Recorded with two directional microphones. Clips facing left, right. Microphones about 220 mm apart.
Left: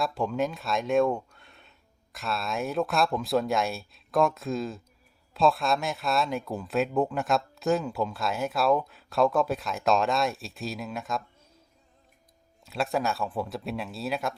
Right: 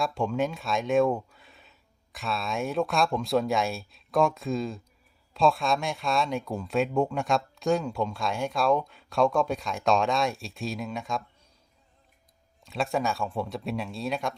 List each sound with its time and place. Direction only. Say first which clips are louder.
0.0 s speech: right 1 dB; centre (ahead or behind)
12.6 s speech: even; centre (ahead or behind)